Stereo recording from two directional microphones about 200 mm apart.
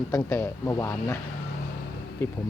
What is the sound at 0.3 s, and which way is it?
Speech, 10° left (ahead or behind).